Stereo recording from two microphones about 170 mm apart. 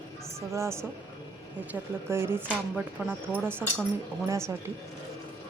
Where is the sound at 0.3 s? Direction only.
15° right (ahead or behind).